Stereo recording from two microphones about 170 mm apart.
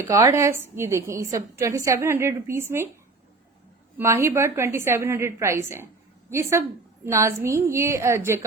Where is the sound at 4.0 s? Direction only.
15° right (ahead or behind).